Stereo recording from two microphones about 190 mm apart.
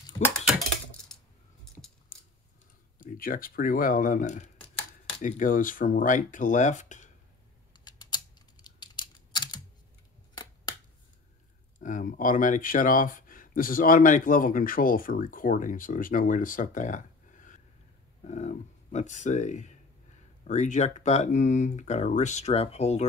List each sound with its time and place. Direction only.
1.1 s coin: centre (ahead or behind)
3.0 s speech: 50° left (ahead or behind)
7.7 s typing: 20° left (ahead or behind)
11.8 s speech: 45° left (ahead or behind)